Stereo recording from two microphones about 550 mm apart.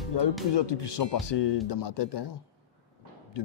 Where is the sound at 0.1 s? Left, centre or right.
Left.